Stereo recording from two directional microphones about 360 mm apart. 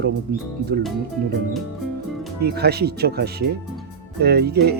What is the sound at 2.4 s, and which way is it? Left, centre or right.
Speech, right.